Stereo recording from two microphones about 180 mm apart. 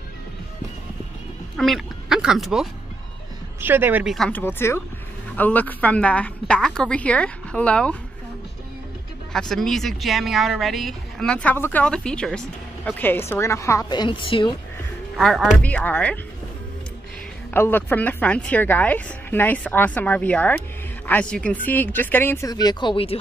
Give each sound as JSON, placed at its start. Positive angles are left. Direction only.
{"t": 1.6, "sound": "a woman's voice", "side_deg": 0}
{"t": 4.3, "sound": "a woman's voice", "side_deg": 10}
{"t": 9.3, "sound": "speech", "side_deg": 5}
{"t": 15.1, "sound": "a woman's voice", "side_deg": 0}
{"t": 17.5, "sound": "a woman's voice", "side_deg": 10}
{"t": 22.5, "sound": "speech", "side_deg": 20}